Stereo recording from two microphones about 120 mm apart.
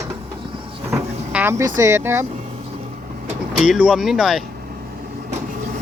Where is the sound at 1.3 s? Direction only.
10° right (ahead or behind).